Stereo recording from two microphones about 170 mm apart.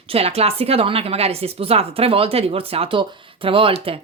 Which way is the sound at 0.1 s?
35° right (ahead or behind).